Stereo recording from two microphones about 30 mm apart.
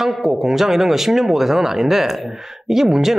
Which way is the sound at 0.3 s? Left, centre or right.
Centre.